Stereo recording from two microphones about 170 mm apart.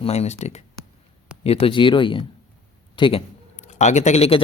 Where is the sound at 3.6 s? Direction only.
45° left (ahead or behind).